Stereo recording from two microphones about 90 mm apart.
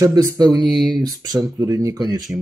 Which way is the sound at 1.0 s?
45° right (ahead or behind).